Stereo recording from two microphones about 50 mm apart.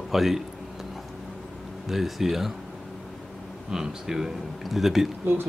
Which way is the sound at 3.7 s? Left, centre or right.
Centre.